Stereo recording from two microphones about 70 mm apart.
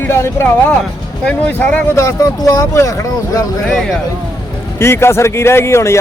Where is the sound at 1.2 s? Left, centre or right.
Left.